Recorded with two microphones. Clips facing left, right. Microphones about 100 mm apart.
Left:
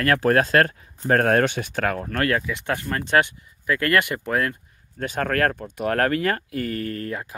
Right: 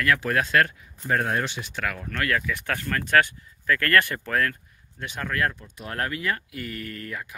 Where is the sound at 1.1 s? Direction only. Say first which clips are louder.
Left 7 dB; 60° left (ahead or behind).